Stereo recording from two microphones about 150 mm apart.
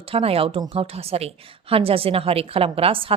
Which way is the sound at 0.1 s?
40° right (ahead or behind).